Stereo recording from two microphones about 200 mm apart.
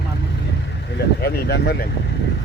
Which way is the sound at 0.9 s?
55° left (ahead or behind).